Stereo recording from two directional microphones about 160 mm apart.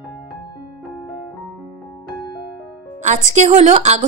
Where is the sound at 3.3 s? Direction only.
45° right (ahead or behind).